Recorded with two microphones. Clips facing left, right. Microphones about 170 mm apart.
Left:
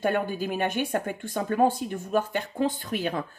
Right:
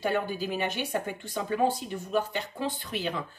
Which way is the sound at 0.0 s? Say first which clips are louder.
Left 3 dB; 50° left (ahead or behind).